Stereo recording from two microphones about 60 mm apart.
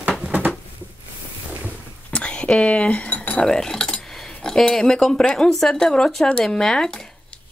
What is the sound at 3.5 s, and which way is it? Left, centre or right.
Speech, centre.